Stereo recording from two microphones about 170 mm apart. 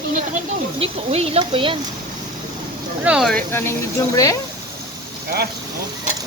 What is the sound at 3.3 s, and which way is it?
Speech, 15° left (ahead or behind).